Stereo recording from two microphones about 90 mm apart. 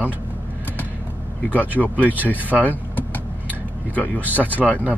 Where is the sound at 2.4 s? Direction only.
20° left (ahead or behind).